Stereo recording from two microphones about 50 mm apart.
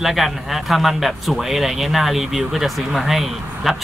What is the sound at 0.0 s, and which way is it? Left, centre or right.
Speech, centre.